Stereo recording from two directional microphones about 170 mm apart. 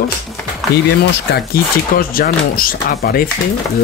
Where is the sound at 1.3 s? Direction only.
60° left (ahead or behind).